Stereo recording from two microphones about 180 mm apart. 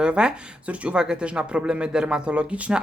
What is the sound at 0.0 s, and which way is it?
Speech, 5° right (ahead or behind).